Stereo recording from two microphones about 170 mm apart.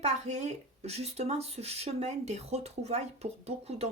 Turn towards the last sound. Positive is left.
turn(degrees=-40)  # may be behind; listen again after turning